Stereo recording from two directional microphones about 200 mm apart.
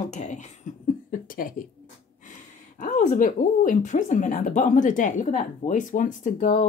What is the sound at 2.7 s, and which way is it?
Speech, 40° left (ahead or behind).